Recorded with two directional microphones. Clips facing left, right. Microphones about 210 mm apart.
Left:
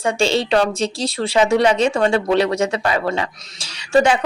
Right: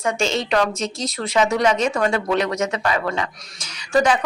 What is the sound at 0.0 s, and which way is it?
A woman's voice, 30° left (ahead or behind).